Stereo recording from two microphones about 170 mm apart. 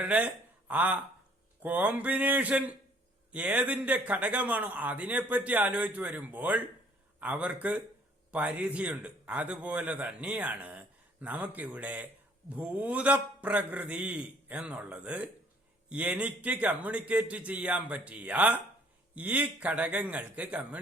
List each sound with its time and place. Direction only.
0.0 s a man's voice: 10° right (ahead or behind)